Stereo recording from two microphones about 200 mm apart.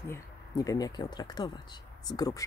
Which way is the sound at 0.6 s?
20° left (ahead or behind).